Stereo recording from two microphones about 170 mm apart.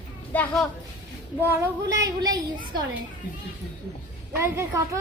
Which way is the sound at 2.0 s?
20° right (ahead or behind).